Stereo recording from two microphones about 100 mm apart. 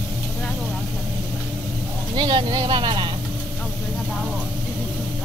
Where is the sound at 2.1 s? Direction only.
50° right (ahead or behind).